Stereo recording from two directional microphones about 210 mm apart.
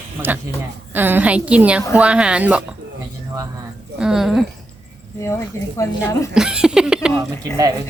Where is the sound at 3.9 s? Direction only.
5° right (ahead or behind).